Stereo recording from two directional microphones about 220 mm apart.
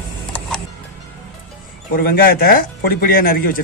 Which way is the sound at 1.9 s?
40° left (ahead or behind).